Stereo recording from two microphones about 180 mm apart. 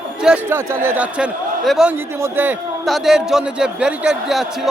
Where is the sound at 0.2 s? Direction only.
10° right (ahead or behind).